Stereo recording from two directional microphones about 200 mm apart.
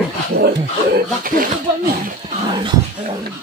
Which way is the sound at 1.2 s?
45° right (ahead or behind).